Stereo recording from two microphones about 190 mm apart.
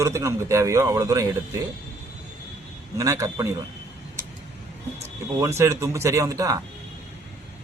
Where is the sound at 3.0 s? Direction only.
15° right (ahead or behind).